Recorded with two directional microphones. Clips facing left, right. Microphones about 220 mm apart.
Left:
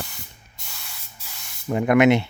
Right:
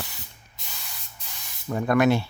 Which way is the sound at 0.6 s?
Centre (ahead or behind).